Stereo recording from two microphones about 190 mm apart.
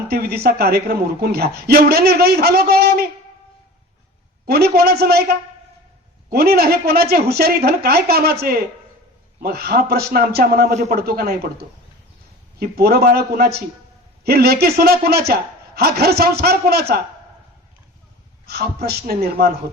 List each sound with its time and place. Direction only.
0.1 s a woman's voice: 55° right (ahead or behind)
4.4 s a woman's voice: 55° right (ahead or behind)
12.5 s a woman's voice: 55° right (ahead or behind)
18.4 s a sound: 55° right (ahead or behind)
18.9 s a woman's voice: 55° right (ahead or behind)